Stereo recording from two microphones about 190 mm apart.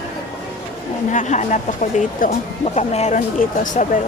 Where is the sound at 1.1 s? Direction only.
40° left (ahead or behind).